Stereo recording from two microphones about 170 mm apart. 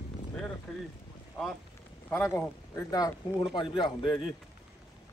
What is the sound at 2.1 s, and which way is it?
Speech, 15° left (ahead or behind).